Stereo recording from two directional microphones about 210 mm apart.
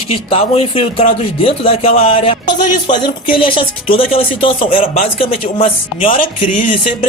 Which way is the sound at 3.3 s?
25° left (ahead or behind).